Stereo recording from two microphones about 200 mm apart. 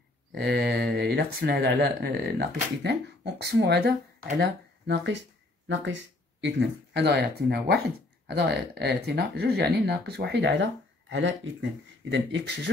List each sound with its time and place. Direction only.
0.3 s speech: 55° right (ahead or behind)
6.4 s speech: 60° right (ahead or behind)